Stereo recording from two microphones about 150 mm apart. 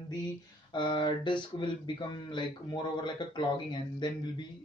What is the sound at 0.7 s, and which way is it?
Speech, 30° left (ahead or behind).